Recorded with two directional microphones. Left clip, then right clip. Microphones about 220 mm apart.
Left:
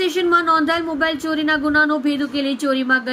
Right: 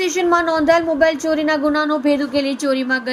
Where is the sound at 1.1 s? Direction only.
10° left (ahead or behind).